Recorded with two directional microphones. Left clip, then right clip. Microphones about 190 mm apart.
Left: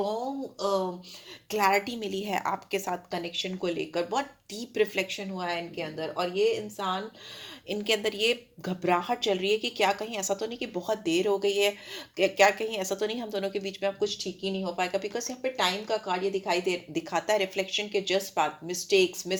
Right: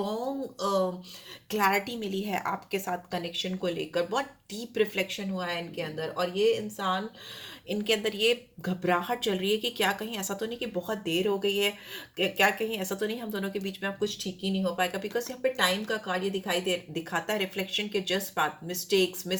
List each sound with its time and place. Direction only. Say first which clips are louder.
1.5 s a woman's voice: left 1 dB; 30° left (ahead or behind)
7.7 s a woman's voice: even; 30° left (ahead or behind)